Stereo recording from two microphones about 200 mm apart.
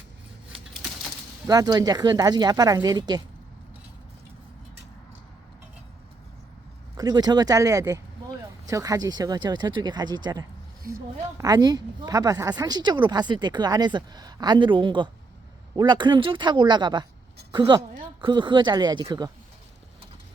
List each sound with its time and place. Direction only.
1.5 s speech: 20° right (ahead or behind)
6.9 s a woman's voice: 20° right (ahead or behind)